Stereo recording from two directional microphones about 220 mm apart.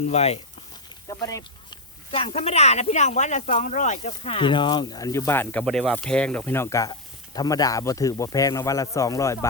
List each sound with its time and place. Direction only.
0.1 s speech: 30° left (ahead or behind)
1.0 s speech: 15° left (ahead or behind)